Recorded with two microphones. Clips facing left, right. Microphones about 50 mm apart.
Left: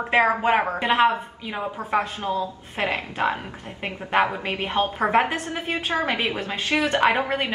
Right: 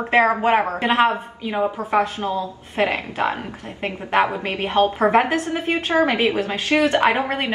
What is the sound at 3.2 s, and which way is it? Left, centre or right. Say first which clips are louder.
A woman's voice: right 1 dB; centre.